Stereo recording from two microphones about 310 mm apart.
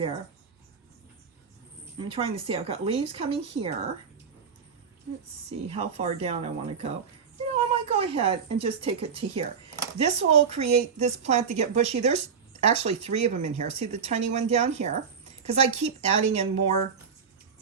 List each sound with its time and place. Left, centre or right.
2.0 s speech: centre
5.6 s a woman's voice: centre